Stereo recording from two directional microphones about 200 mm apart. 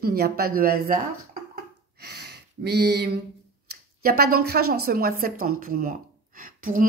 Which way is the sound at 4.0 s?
50° right (ahead or behind).